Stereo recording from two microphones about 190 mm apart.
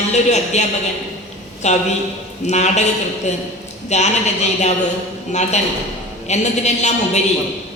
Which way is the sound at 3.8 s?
35° left (ahead or behind).